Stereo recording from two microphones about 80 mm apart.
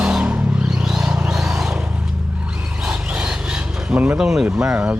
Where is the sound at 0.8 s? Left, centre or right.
Centre.